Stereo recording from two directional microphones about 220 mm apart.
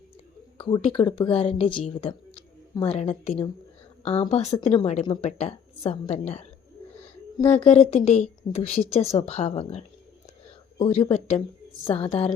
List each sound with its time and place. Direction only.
0.6 s a woman's voice: 20° left (ahead or behind)